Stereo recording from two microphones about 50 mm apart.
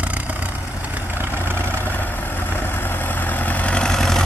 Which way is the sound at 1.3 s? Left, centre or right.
Right.